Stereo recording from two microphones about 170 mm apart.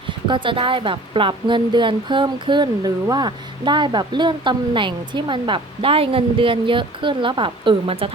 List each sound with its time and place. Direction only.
0.1 s speech: 30° right (ahead or behind)